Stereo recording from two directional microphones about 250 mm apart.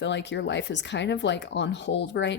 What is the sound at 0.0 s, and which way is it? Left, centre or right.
Speech, left.